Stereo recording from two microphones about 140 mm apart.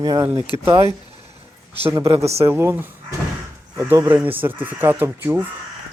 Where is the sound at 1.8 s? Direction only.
20° right (ahead or behind).